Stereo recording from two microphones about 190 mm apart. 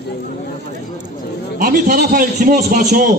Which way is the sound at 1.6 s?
45° right (ahead or behind).